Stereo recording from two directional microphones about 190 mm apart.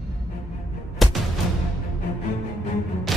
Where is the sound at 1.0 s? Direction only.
Centre (ahead or behind).